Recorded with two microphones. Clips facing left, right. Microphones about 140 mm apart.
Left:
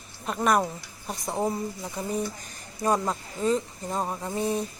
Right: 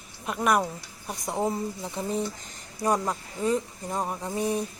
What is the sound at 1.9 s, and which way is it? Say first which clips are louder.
Speech: even; 20° right (ahead or behind).